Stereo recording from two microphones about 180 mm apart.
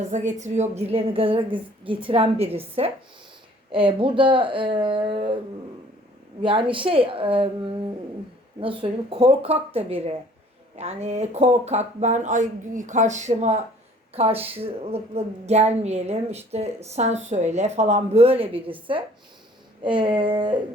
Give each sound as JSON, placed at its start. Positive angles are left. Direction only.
{"t": 0.1, "sound": "speech", "side_deg": -40}
{"t": 6.4, "sound": "speech", "side_deg": -30}
{"t": 19.8, "sound": "speech", "side_deg": -25}